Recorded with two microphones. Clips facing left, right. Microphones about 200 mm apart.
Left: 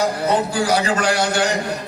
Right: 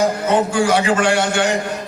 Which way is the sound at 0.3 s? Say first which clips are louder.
Right 2 dB; 35° left (ahead or behind).